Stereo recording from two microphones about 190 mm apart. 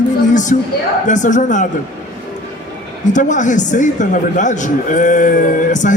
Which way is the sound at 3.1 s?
40° left (ahead or behind).